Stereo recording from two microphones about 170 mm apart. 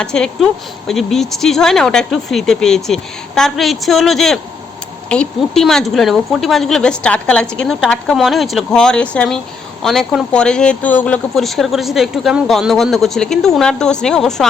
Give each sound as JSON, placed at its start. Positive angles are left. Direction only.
{"t": 0.0, "sound": "speech", "side_deg": 5}